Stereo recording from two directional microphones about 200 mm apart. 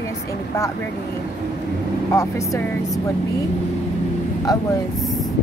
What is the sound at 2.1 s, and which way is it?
Speech, 15° left (ahead or behind).